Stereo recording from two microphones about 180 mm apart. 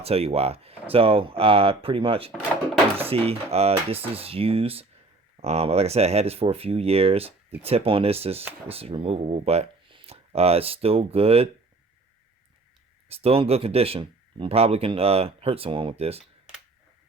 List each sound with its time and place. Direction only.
0.0 s speech: 35° right (ahead or behind)
13.1 s speech: 35° right (ahead or behind)